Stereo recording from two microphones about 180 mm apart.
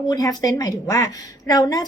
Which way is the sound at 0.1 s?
20° left (ahead or behind).